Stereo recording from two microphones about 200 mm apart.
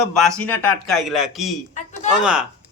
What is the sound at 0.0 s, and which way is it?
Speech, 5° left (ahead or behind).